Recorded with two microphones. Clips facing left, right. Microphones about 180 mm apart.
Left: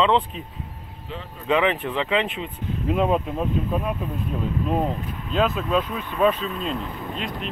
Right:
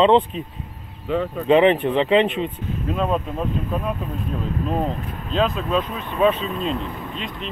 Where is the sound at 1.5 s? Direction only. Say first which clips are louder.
Right 6 dB; 25° right (ahead or behind).